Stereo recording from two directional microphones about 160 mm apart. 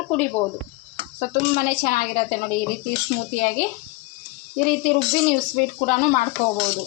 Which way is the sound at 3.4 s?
60° left (ahead or behind).